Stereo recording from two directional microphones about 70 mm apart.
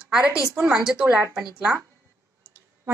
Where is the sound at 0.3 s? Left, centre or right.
Left.